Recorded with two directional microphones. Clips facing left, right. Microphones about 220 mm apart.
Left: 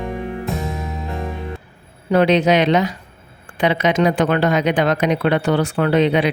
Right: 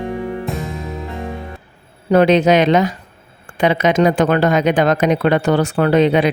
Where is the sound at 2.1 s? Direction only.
45° right (ahead or behind).